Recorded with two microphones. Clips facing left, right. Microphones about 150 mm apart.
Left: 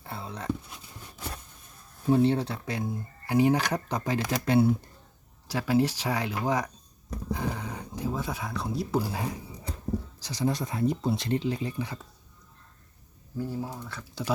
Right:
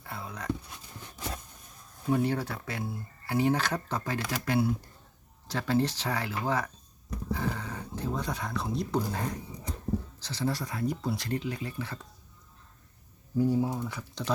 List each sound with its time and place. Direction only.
0.0 s whispering: 25° left (ahead or behind)
2.0 s speech: 30° left (ahead or behind)
5.5 s speech: 10° left (ahead or behind)
13.3 s speech: 15° right (ahead or behind)